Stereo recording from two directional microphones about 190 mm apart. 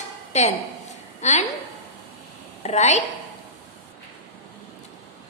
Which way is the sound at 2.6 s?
35° left (ahead or behind).